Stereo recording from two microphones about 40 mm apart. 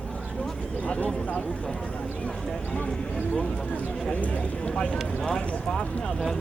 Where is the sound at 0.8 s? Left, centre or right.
Left.